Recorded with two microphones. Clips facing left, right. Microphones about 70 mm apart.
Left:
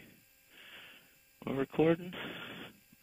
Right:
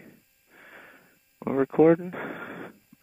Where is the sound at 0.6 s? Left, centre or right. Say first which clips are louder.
Right 7 dB; right.